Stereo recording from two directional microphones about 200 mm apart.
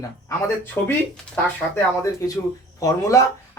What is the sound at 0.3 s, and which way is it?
Speech, 10° left (ahead or behind).